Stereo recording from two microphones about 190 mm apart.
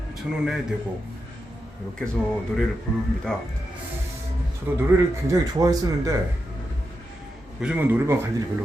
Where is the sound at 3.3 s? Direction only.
5° left (ahead or behind).